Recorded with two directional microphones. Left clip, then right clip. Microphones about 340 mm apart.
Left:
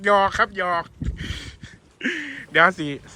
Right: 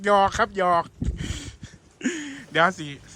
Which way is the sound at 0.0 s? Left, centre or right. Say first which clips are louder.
Left 2 dB; centre.